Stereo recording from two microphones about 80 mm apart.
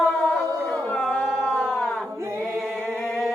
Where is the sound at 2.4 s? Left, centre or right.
Centre.